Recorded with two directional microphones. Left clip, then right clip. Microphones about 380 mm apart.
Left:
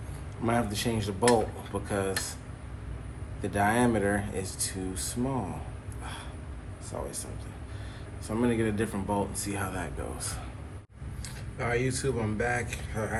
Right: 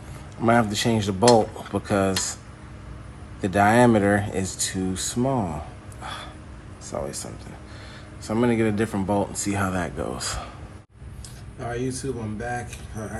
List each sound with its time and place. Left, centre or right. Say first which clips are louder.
0.4 s speech: right 9 dB; right
3.4 s speech: right 9 dB; right
6.0 s gasp: right 8 dB; right
6.9 s speech: right 7 dB; right
8.3 s speech: right 6 dB; right
11.6 s speech: even; centre